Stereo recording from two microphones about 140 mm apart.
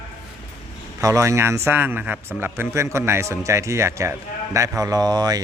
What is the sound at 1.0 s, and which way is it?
A man's voice, 20° right (ahead or behind).